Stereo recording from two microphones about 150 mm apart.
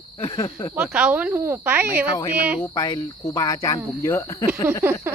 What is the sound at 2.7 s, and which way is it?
Cricket, 25° left (ahead or behind).